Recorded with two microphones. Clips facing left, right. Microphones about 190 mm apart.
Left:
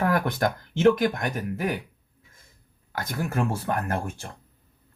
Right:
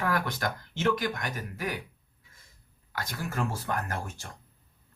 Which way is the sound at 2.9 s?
50° left (ahead or behind).